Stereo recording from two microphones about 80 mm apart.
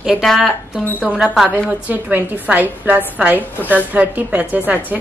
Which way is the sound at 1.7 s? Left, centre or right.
Centre.